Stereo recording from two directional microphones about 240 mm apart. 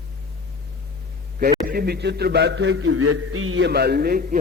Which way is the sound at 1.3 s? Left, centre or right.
Right.